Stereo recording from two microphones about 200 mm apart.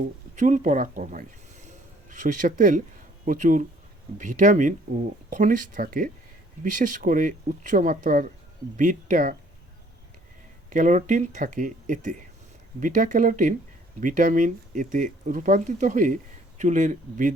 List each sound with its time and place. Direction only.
0.3 s speech: 40° right (ahead or behind)
1.6 s a sound: 40° right (ahead or behind)
3.2 s speech: 40° right (ahead or behind)
10.7 s speech: 40° right (ahead or behind)